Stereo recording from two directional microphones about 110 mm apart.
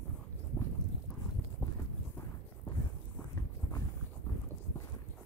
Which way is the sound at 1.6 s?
25° left (ahead or behind).